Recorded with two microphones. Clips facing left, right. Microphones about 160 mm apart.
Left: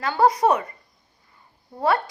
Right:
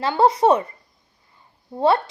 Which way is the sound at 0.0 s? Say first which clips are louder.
Right 2 dB; 25° right (ahead or behind).